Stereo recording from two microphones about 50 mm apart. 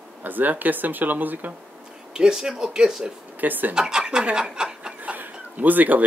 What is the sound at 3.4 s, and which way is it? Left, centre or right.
Speech, right.